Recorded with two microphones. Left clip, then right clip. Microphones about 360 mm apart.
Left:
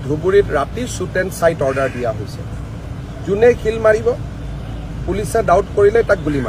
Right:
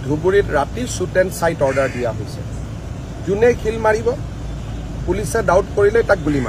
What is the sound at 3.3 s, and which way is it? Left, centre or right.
Speech, centre.